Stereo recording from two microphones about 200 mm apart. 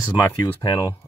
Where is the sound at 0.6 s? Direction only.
20° left (ahead or behind).